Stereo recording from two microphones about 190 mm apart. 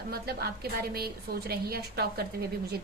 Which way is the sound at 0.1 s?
55° right (ahead or behind).